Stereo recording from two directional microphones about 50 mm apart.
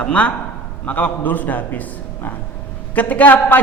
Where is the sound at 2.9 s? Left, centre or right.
Left.